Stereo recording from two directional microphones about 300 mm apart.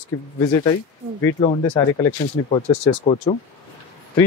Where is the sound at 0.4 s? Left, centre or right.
Centre.